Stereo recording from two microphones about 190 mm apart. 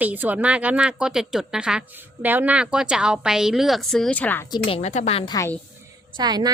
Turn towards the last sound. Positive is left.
turn(degrees=-20)  # may be behind; listen again after turning